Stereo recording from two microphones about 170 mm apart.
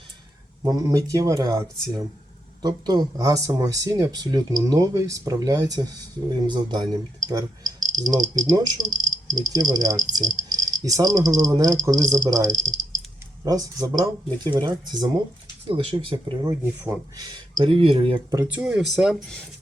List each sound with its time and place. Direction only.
0.6 s speech: 20° right (ahead or behind)
18.3 s speech: 15° right (ahead or behind)